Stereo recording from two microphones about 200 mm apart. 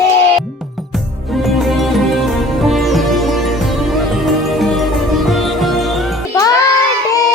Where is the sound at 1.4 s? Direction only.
Centre (ahead or behind).